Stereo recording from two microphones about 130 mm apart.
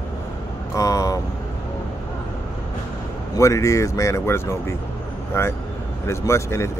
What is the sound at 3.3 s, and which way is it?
Speech, 25° left (ahead or behind).